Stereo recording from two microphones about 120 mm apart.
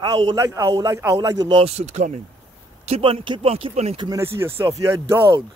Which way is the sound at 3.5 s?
65° right (ahead or behind).